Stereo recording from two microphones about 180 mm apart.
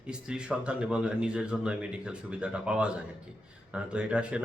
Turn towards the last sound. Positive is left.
turn(degrees=-5)  # may be behind; listen again after turning